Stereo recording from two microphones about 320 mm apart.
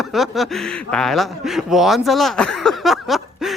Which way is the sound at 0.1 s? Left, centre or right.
Centre.